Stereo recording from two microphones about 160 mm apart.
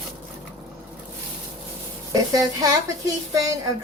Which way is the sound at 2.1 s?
20° right (ahead or behind).